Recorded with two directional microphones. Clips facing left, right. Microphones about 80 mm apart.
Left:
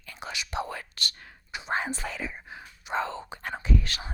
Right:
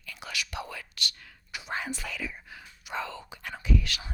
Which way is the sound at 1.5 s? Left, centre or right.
Left.